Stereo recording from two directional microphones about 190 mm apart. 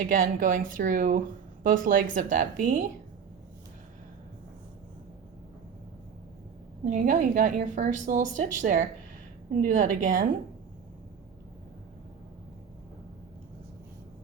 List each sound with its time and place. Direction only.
0.1 s a woman's voice: 45° right (ahead or behind)
6.8 s a woman's voice: 40° right (ahead or behind)